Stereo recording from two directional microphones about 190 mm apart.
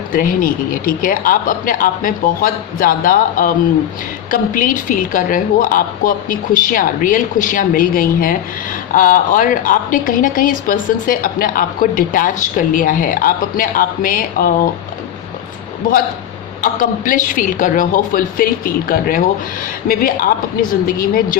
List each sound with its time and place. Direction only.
0.1 s a woman's voice: 45° left (ahead or behind)
16.6 s a woman's voice: 45° left (ahead or behind)